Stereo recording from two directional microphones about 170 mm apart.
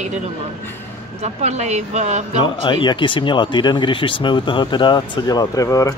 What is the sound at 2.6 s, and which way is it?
Speech, 25° left (ahead or behind).